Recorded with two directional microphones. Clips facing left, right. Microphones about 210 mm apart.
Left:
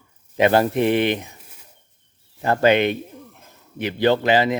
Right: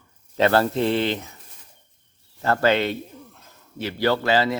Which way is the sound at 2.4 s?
15° left (ahead or behind).